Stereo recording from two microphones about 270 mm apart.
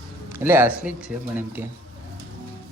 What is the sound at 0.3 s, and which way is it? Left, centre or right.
Speech, centre.